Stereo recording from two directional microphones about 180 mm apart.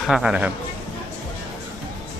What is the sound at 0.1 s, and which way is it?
Speech, 5° right (ahead or behind).